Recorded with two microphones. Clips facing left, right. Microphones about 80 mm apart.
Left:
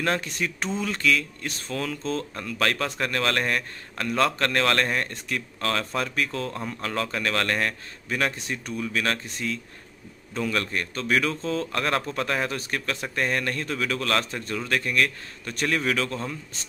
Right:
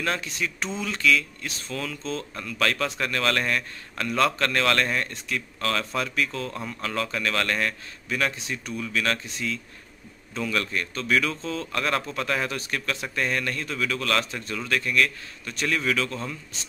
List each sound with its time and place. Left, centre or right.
0.0 s speech: left